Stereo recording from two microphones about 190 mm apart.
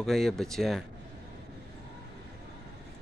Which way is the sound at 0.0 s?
Centre (ahead or behind).